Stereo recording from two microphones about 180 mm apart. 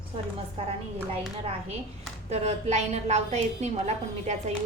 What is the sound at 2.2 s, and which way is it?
A woman's voice, 35° right (ahead or behind).